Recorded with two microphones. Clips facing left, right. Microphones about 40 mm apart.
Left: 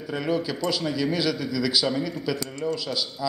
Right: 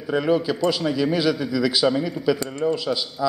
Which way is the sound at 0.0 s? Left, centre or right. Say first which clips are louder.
Right 6 dB; centre.